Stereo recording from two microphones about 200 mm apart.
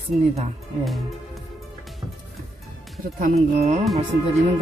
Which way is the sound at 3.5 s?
35° right (ahead or behind).